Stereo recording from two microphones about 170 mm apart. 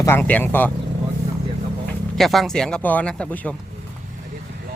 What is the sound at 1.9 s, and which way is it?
Speech, centre (ahead or behind).